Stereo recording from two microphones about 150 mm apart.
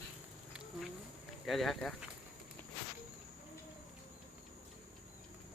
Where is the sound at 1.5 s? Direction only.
Centre (ahead or behind).